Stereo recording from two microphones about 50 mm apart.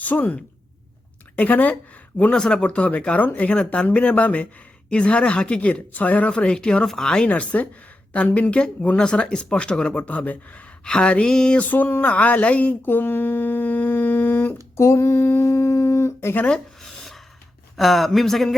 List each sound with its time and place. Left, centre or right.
0.0 s a woman's voice: left
1.4 s speech: left
2.3 s speech: centre
3.5 s speech: left
6.8 s speech: centre
7.3 s speech: left
11.7 s speech: left
12.8 s speech: left
14.8 s a sound: left
15.4 s a sound: left
16.5 s a sound: centre
17.7 s speech: centre